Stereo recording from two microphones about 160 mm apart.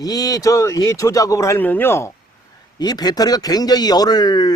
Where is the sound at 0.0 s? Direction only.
20° left (ahead or behind).